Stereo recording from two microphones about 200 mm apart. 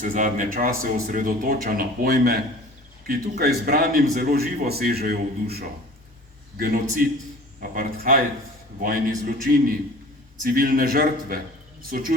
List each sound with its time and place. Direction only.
0.0 s a man's voice: 40° right (ahead or behind)